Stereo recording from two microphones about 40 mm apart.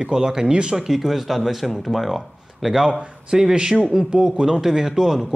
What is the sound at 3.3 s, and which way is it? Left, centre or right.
Speech, centre.